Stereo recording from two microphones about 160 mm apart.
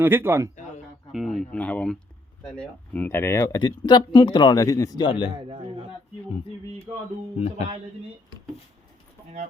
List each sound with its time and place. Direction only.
0.0 s a man's voice: 15° right (ahead or behind)
1.1 s speech: centre (ahead or behind); by 5.3 s 30° left (ahead or behind)
5.5 s a sound: 35° right (ahead or behind)